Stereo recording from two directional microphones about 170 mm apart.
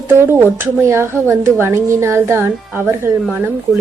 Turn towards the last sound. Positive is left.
turn(degrees=-10)  # may be behind; listen again after turning